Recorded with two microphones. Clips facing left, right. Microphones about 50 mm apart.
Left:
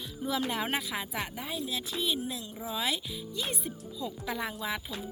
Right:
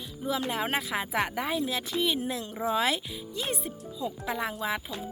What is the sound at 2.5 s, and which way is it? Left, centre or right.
Speech, right.